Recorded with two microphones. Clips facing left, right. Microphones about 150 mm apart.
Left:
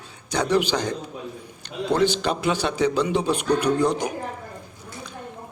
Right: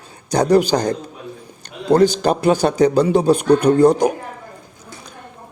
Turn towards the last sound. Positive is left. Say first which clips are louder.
# right 9 dB
turn(degrees=-45)  # may be behind; listen again after turning